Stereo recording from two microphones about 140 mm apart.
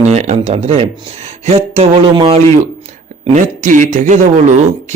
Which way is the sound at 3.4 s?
65° right (ahead or behind).